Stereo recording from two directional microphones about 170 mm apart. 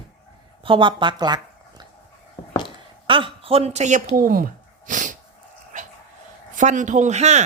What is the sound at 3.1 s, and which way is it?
Speech, 30° right (ahead or behind).